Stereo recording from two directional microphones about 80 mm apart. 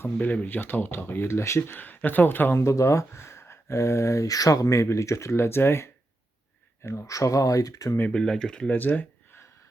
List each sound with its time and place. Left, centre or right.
0.0 s speech: centre
2.6 s speech: left
8.1 s speech: centre
8.7 s speech: left